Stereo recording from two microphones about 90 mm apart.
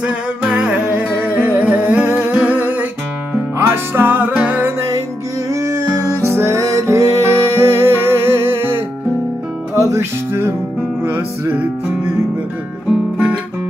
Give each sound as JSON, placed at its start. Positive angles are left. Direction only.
{"t": 0.0, "sound": "music", "side_deg": -10}
{"t": 1.1, "sound": "humming", "side_deg": -20}
{"t": 3.5, "sound": "music", "side_deg": -30}
{"t": 5.5, "sound": "music", "side_deg": -30}